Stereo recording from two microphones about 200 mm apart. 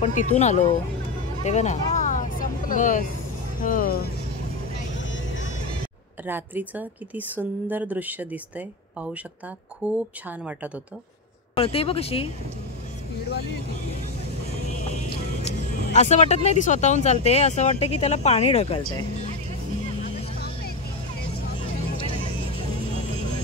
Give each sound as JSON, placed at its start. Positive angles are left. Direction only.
{"t": 0.0, "sound": "speech", "side_deg": 40}
{"t": 1.4, "sound": "vehicle", "side_deg": 35}
{"t": 3.6, "sound": "speech", "side_deg": 45}
{"t": 4.9, "sound": "vehicle", "side_deg": 70}
{"t": 6.2, "sound": "speech", "side_deg": -10}
{"t": 11.5, "sound": "speech", "side_deg": 30}
{"t": 15.4, "sound": "vehicle", "side_deg": 35}
{"t": 16.4, "sound": "speech", "side_deg": 35}